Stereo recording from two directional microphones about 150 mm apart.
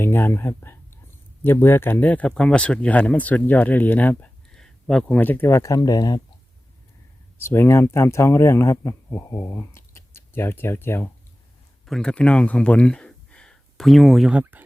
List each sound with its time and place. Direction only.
0.0 s speech: 15° left (ahead or behind)
7.3 s speech: 15° left (ahead or behind)
11.9 s speech: 5° left (ahead or behind)